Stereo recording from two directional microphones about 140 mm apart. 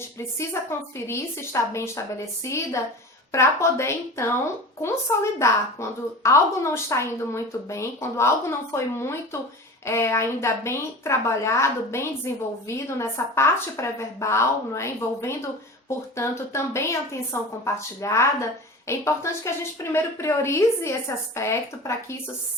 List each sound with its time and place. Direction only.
0.3 s a woman's voice: 20° left (ahead or behind)